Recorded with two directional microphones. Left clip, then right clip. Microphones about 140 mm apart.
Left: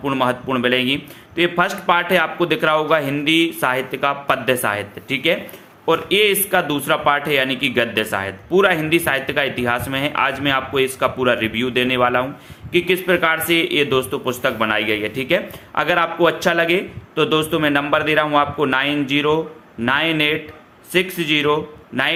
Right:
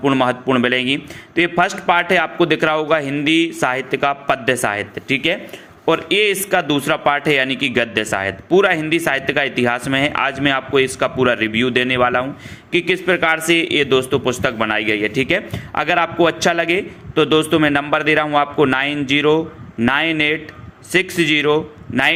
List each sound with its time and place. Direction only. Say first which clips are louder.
0.0 s a man's voice: right 3 dB; 40° right (ahead or behind)